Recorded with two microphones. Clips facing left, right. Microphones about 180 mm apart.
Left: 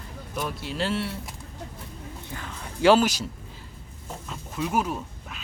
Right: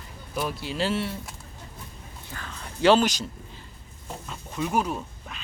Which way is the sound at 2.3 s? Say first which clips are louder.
Even; 15° left (ahead or behind).